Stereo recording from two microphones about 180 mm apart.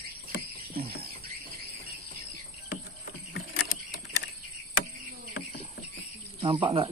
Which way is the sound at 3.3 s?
60° left (ahead or behind).